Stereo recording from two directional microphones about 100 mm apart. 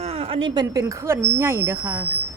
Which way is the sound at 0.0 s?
90° right.